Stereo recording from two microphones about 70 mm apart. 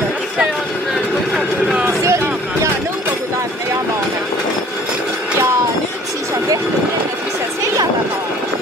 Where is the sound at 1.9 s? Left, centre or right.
Right.